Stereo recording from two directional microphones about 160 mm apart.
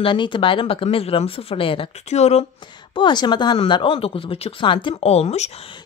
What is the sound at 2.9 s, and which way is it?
Speech, 30° left (ahead or behind).